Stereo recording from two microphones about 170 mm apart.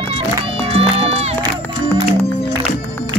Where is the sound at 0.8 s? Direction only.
35° right (ahead or behind).